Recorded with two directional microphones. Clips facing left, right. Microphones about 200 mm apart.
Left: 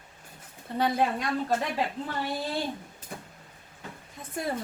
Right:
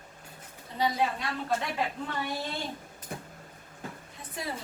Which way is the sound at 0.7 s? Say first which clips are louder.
Left 3 dB; 55° left (ahead or behind).